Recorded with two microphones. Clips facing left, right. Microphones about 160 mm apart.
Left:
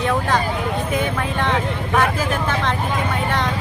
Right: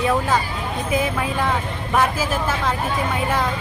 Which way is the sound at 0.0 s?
5° right (ahead or behind).